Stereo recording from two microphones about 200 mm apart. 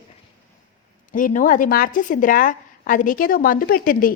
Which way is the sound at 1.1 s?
40° left (ahead or behind).